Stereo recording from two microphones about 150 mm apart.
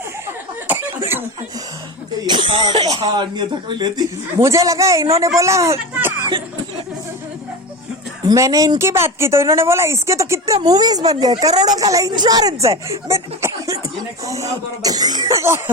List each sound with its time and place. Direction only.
0.7 s chuckle: 15° right (ahead or behind)
2.2 s speech: 30° right (ahead or behind); by 6.1 s 15° right (ahead or behind)
8.3 s speech: 20° right (ahead or behind)
14.8 s speech: 25° right (ahead or behind)